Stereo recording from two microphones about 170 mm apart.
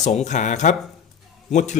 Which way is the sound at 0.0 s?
45° left (ahead or behind).